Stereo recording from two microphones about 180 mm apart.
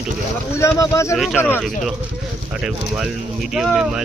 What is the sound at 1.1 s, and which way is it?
Speech, centre (ahead or behind).